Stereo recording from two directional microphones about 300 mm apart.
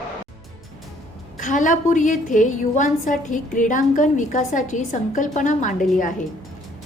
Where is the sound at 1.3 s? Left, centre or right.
Left.